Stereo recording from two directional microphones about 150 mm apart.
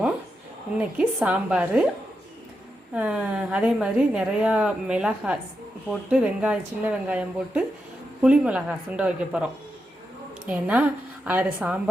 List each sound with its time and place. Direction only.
0.9 s speech: 5° right (ahead or behind)
2.9 s a woman's voice: 5° right (ahead or behind)